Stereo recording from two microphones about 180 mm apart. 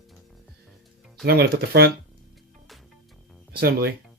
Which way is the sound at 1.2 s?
60° right (ahead or behind).